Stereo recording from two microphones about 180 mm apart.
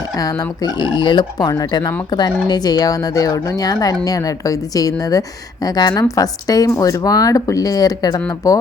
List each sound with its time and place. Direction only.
0.2 s speech: 20° left (ahead or behind)